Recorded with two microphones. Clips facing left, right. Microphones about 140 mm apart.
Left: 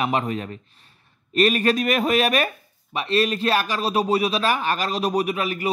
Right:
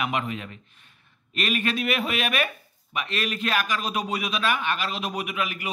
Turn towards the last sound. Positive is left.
turn(degrees=35)  # may be behind; listen again after turning